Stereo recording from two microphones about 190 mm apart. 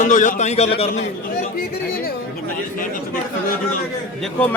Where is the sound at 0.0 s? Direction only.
40° left (ahead or behind).